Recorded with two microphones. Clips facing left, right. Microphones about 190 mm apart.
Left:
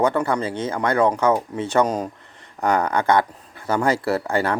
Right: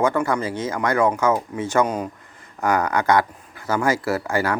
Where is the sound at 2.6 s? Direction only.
30° left (ahead or behind).